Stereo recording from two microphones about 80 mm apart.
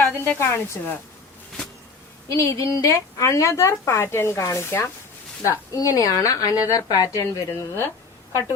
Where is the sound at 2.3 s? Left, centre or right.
Left.